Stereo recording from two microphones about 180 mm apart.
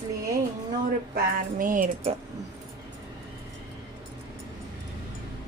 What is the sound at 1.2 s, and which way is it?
Music, 50° right (ahead or behind).